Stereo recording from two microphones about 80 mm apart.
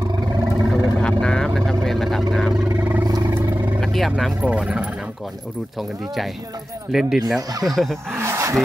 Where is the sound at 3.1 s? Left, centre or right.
Right.